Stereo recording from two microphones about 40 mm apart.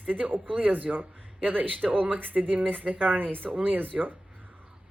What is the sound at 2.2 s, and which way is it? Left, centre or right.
Speech, right.